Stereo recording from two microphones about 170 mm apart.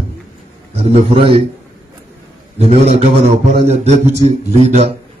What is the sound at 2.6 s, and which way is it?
A man's voice, 35° right (ahead or behind).